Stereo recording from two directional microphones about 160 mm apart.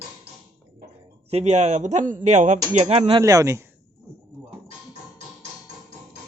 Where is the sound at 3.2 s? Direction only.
20° right (ahead or behind).